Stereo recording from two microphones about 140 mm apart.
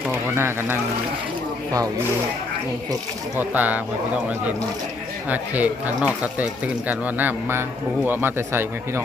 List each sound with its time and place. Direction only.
0.3 s speech: 15° right (ahead or behind)
3.3 s speech: 10° right (ahead or behind)
5.3 s speech: 10° right (ahead or behind)